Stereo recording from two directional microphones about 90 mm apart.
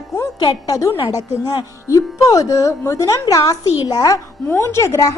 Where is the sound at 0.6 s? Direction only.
40° left (ahead or behind).